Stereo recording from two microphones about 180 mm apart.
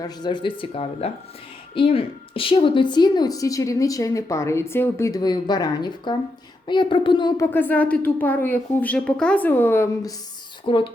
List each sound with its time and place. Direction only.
0.0 s a woman's voice: 25° left (ahead or behind)
10.7 s a woman's voice: 30° left (ahead or behind)